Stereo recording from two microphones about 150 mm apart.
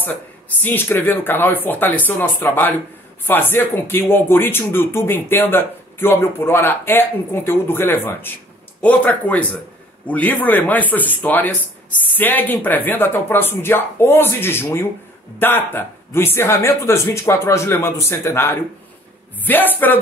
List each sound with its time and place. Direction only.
0.0 s speech: 15° left (ahead or behind)